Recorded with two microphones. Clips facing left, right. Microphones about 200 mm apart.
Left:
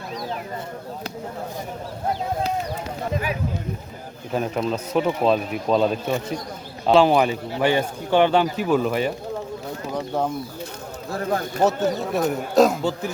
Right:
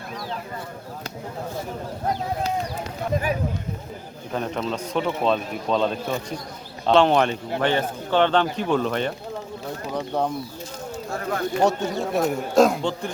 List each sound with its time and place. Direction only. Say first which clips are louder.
4.3 s speech: left 3 dB; 10° left (ahead or behind)
11.1 s speech: left 1 dB; 35° left (ahead or behind)
11.6 s speech: left 2 dB; centre (ahead or behind)